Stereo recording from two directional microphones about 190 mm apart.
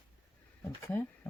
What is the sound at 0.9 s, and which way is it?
Speech, 10° left (ahead or behind).